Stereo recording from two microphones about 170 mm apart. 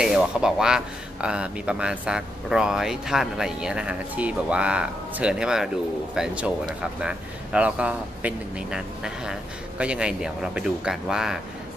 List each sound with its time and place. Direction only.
0.0 s speech: 5° right (ahead or behind)